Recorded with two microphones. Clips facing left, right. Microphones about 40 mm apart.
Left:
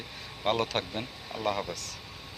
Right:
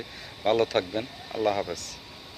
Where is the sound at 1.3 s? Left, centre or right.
Centre.